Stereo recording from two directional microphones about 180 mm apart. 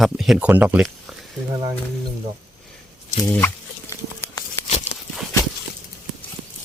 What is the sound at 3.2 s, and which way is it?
Pig, 10° left (ahead or behind).